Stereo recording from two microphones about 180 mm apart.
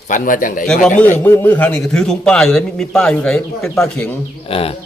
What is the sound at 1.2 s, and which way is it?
A man's voice, 10° left (ahead or behind).